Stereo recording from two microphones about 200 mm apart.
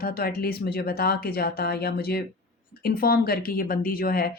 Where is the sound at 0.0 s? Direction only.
50° left (ahead or behind).